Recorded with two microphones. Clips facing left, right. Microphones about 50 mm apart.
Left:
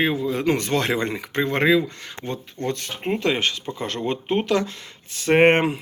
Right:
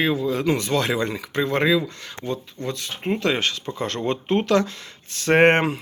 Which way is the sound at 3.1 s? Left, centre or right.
Left.